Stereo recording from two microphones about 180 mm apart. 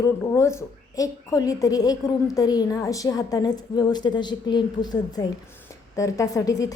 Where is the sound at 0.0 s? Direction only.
15° left (ahead or behind).